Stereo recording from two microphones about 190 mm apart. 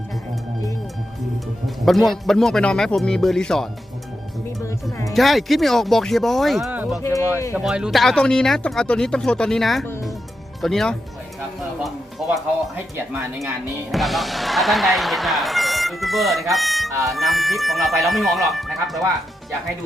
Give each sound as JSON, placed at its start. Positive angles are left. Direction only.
{"t": 1.6, "sound": "speech", "side_deg": 0}
{"t": 4.6, "sound": "music", "side_deg": 15}
{"t": 5.1, "sound": "speech", "side_deg": 0}
{"t": 7.0, "sound": "speech", "side_deg": 15}
{"t": 7.5, "sound": "speech", "side_deg": -5}
{"t": 13.9, "sound": "speech", "side_deg": 0}